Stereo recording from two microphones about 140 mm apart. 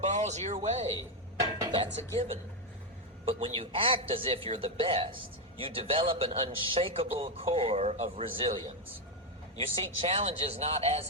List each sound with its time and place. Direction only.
0.1 s a man's voice: 55° right (ahead or behind)
3.2 s a man's voice: 45° right (ahead or behind)